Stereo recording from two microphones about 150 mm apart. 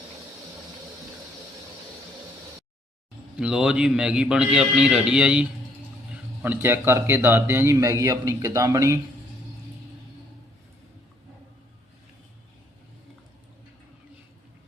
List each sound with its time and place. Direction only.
3.3 s a man's voice: 5° right (ahead or behind); by 9.0 s 20° right (ahead or behind)